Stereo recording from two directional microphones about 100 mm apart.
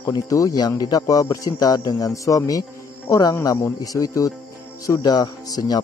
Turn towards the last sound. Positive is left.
turn(degrees=40)  # may be behind; listen again after turning